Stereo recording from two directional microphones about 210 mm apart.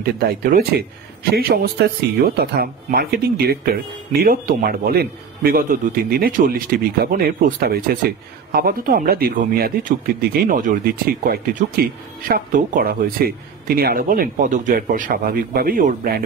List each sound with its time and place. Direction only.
0.0 s a man's voice: 45° right (ahead or behind)